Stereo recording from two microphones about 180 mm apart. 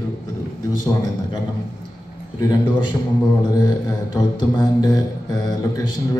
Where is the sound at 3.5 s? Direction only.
20° left (ahead or behind).